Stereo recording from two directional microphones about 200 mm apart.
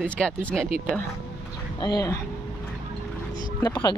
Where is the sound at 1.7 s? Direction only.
20° left (ahead or behind).